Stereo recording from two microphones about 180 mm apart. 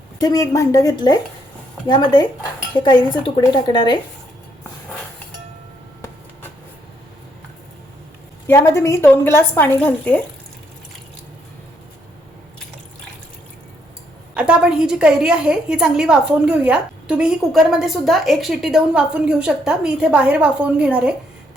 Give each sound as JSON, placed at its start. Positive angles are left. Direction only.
{"t": 0.2, "sound": "speech", "side_deg": 20}
{"t": 8.4, "sound": "a woman's voice", "side_deg": 15}
{"t": 14.3, "sound": "a woman's voice", "side_deg": -5}